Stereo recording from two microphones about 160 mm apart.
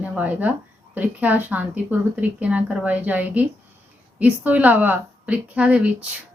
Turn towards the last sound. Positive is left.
turn(degrees=-10)  # may be behind; listen again after turning